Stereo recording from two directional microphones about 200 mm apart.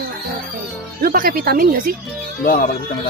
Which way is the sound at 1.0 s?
45° right (ahead or behind).